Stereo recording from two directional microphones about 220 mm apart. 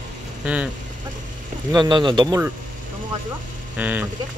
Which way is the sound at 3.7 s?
5° right (ahead or behind).